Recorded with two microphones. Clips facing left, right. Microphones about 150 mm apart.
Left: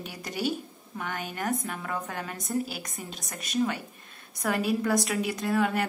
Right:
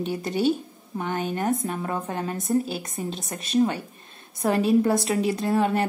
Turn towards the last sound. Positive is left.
turn(degrees=-25)  # may be behind; listen again after turning